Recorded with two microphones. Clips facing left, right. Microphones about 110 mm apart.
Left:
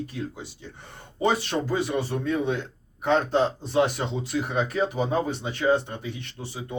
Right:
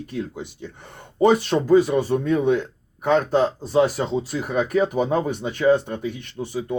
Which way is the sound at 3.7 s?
35° right (ahead or behind).